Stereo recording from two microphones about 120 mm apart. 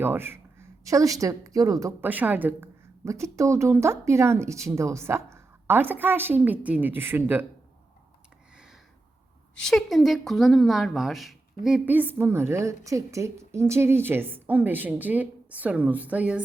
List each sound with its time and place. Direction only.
0.0 s speech: 20° right (ahead or behind)
2.0 s a woman's voice: 15° right (ahead or behind)
8.5 s a sound: 5° right (ahead or behind)
9.6 s a woman's voice: 5° left (ahead or behind)
11.9 s a woman's voice: 15° right (ahead or behind)